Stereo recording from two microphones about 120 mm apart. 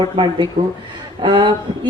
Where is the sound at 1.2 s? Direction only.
45° right (ahead or behind).